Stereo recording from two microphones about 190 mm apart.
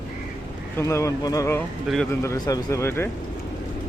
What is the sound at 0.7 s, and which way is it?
Speech, 15° left (ahead or behind).